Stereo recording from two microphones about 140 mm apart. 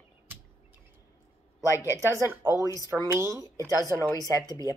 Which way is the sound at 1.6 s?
25° left (ahead or behind).